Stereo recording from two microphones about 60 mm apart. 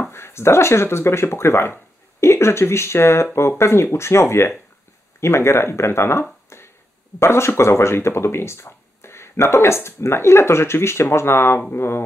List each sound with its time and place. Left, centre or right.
0.1 s speech: left
6.5 s a sound: left
7.2 s speech: left